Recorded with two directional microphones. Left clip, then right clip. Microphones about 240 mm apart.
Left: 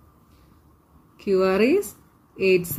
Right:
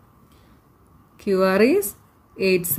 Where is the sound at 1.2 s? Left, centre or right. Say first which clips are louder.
Right 2 dB; right.